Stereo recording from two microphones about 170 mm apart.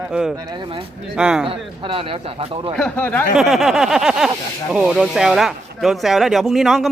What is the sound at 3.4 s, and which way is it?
A man's voice, centre (ahead or behind).